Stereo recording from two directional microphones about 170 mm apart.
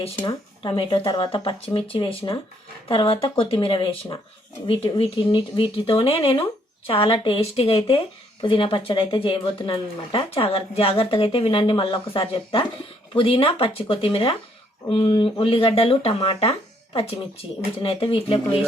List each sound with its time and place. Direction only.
0.2 s speech: 30° left (ahead or behind)